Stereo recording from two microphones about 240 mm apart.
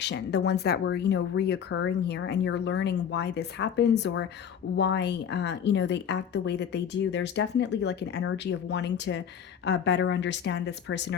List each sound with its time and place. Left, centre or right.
0.0 s speech: left